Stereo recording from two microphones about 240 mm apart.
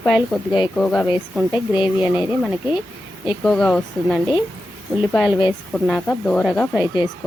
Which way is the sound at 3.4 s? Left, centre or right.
Centre.